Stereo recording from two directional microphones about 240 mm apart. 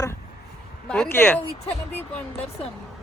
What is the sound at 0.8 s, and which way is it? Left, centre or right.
Speech, centre.